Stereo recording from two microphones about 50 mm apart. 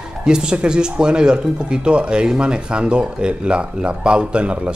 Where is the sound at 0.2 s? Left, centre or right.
Centre.